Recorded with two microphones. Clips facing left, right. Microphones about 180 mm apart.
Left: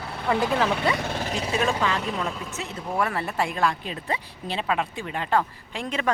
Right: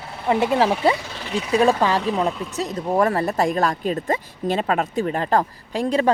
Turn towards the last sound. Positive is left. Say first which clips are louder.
# right 8 dB
turn(degrees=-35)  # may be behind; listen again after turning